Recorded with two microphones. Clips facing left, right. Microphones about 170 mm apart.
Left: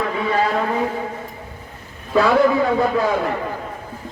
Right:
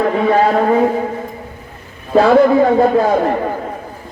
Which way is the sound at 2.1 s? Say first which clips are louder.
Right 6 dB; 50° right (ahead or behind).